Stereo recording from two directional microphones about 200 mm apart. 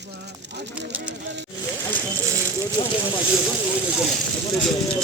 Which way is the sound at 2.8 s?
20° left (ahead or behind).